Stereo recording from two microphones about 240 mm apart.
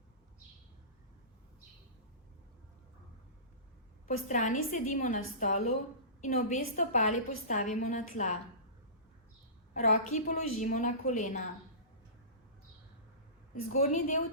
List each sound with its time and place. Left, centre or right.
4.3 s a woman's voice: left
9.7 s a woman's voice: left
13.5 s a woman's voice: left